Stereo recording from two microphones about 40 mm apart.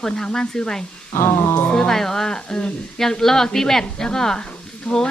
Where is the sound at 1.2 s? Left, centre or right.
Left.